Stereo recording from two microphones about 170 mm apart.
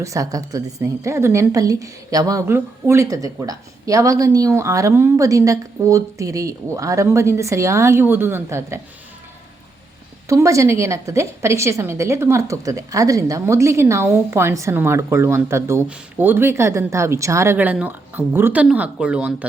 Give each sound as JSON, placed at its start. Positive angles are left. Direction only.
{"t": 0.0, "sound": "a woman's voice", "side_deg": -20}
{"t": 10.2, "sound": "a woman's voice", "side_deg": -20}